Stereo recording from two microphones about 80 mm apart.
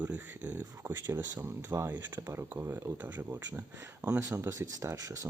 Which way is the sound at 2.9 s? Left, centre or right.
Right.